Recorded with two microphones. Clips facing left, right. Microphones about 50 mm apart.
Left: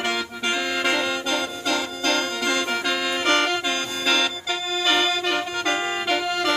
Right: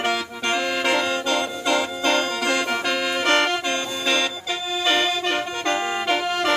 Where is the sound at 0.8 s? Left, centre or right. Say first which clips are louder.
Right 2 dB; centre.